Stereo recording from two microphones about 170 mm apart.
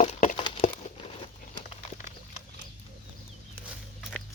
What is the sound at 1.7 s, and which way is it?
Horse, 40° left (ahead or behind).